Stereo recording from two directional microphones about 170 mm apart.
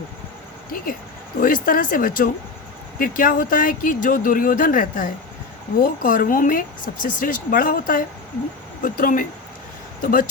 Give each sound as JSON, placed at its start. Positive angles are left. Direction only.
{"t": 1.4, "sound": "speech", "side_deg": 55}